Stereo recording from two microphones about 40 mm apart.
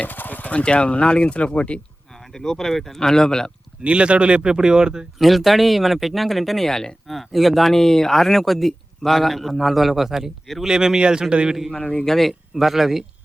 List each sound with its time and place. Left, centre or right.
0.0 s horse: left
0.5 s speech: left
2.3 s speech: centre
3.8 s speech: right
5.2 s speech: centre
6.7 s speech: centre
7.1 s a man's voice: centre; by 11.5 s right
11.8 s speech: left
12.0 s speech: centre
12.3 s a man's voice: centre